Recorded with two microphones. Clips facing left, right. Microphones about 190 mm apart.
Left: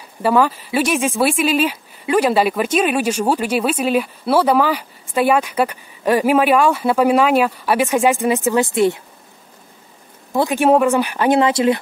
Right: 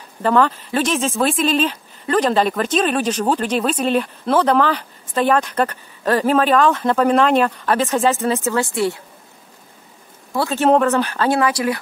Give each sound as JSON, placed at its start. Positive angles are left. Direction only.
{"t": 0.2, "sound": "speech", "side_deg": 10}
{"t": 10.3, "sound": "speech", "side_deg": 15}